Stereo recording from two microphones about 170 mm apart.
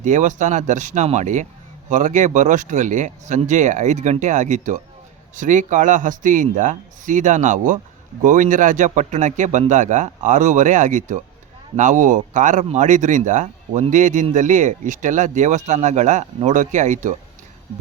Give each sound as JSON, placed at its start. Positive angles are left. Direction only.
{"t": 0.0, "sound": "speech", "side_deg": -45}